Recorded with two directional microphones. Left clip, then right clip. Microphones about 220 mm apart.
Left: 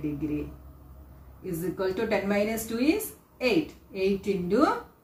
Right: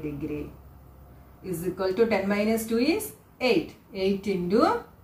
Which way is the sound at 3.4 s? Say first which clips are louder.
Right 2 dB; 20° right (ahead or behind).